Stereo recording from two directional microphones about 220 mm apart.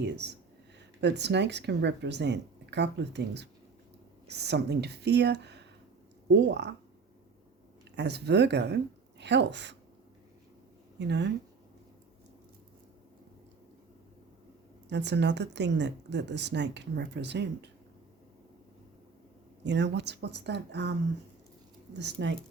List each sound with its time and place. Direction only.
0.0 s a woman's voice: 50° right (ahead or behind)
7.9 s a woman's voice: 50° right (ahead or behind)
10.9 s speech: 50° right (ahead or behind)
14.8 s a woman's voice: 50° right (ahead or behind)
19.6 s a woman's voice: 50° right (ahead or behind)
21.9 s a woman's voice: 50° right (ahead or behind)